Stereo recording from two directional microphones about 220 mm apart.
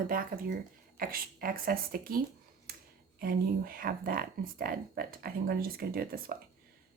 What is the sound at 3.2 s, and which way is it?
Speech, 40° right (ahead or behind).